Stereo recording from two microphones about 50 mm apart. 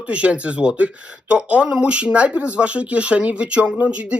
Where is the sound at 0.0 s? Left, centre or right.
Right.